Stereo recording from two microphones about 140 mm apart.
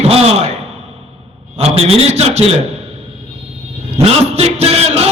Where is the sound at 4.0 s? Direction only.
45° right (ahead or behind).